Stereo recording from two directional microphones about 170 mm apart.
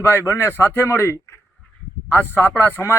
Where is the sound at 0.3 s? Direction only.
15° left (ahead or behind).